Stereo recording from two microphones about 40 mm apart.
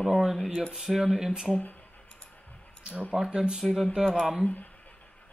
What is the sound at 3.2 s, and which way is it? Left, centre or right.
Speech, centre.